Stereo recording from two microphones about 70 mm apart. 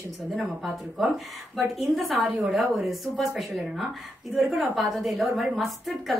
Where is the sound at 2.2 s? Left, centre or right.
Centre.